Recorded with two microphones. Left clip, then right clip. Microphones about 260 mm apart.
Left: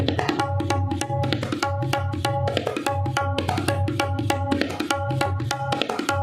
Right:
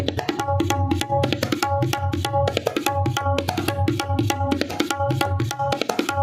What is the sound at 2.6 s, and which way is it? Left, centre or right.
Music, right.